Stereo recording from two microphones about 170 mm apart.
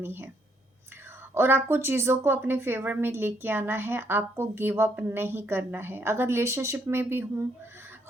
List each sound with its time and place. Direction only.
0.0 s speech: 15° right (ahead or behind)
1.3 s speech: 15° right (ahead or behind)